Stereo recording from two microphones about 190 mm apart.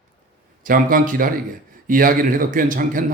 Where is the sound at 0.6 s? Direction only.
50° right (ahead or behind).